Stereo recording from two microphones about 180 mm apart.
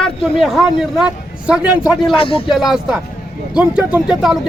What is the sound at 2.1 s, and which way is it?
Speech, 30° left (ahead or behind).